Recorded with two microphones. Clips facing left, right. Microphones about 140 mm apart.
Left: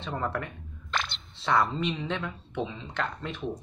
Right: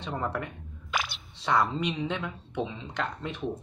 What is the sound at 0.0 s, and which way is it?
Speech, 15° right (ahead or behind).